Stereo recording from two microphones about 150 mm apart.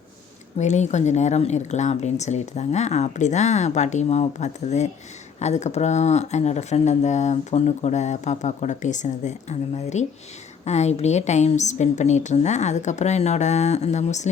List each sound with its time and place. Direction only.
0.6 s speech: 50° left (ahead or behind)